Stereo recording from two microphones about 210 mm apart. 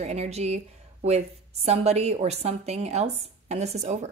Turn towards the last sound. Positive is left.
turn(degrees=-35)  # may be behind; listen again after turning